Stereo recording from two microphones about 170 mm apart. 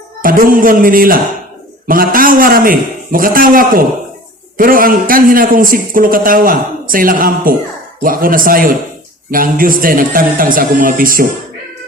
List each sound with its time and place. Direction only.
0.2 s a man's voice: 55° right (ahead or behind)